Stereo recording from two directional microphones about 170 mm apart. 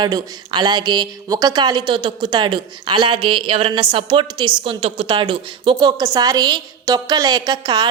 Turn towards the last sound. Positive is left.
turn(degrees=-25)  # may be behind; listen again after turning